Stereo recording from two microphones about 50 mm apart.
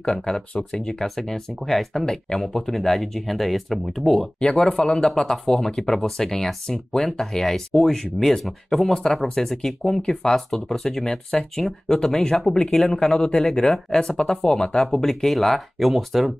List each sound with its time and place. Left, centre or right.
0.0 s speech: centre
4.4 s speech: centre